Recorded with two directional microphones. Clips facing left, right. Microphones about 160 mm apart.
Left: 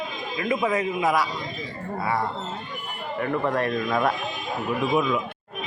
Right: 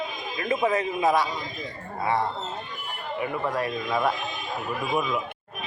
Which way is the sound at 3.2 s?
5° right (ahead or behind).